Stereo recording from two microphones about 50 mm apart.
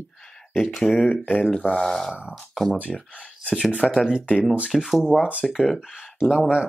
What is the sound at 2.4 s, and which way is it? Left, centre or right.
Speech, centre.